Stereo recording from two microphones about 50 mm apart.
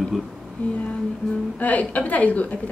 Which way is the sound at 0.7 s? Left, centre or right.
Left.